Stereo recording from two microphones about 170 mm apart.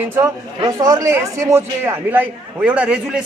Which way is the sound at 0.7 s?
20° right (ahead or behind).